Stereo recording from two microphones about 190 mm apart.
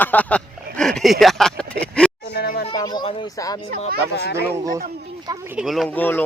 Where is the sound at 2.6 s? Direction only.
20° left (ahead or behind).